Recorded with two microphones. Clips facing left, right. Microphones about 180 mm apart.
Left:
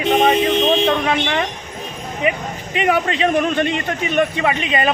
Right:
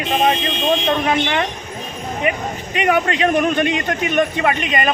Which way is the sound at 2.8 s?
Centre (ahead or behind).